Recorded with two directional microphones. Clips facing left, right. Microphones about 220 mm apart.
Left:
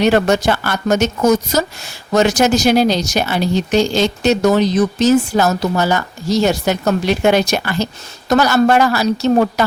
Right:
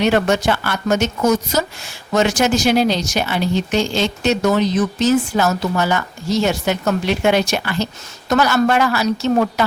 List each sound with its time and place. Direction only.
0.0 s speech: 40° left (ahead or behind)